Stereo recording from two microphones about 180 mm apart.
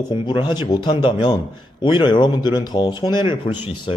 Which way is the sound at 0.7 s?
25° left (ahead or behind).